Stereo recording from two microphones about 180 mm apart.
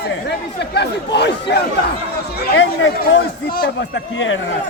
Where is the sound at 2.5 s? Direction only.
90° left.